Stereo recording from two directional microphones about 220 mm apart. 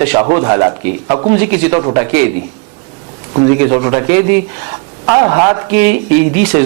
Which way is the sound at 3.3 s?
25° right (ahead or behind).